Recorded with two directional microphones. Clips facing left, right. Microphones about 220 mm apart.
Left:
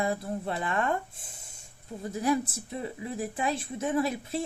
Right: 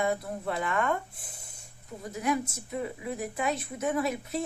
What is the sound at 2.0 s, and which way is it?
A woman's voice, 30° left (ahead or behind).